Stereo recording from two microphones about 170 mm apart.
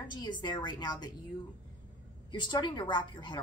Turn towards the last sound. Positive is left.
turn(degrees=25)  # may be behind; listen again after turning